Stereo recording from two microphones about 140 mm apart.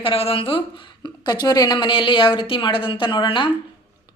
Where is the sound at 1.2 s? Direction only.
30° left (ahead or behind).